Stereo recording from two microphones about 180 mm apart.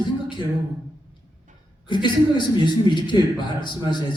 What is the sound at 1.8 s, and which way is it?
A man's voice, 25° left (ahead or behind).